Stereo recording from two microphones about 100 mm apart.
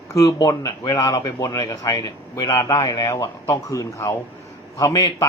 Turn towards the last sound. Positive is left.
turn(degrees=35)  # may be behind; listen again after turning